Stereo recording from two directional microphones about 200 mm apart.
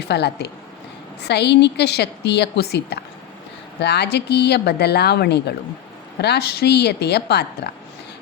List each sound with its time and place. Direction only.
0.1 s speech: 55° left (ahead or behind)